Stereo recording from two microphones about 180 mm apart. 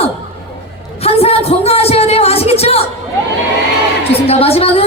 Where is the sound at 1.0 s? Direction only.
35° left (ahead or behind).